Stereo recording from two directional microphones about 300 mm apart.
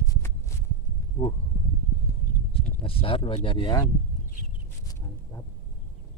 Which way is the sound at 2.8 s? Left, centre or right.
Centre.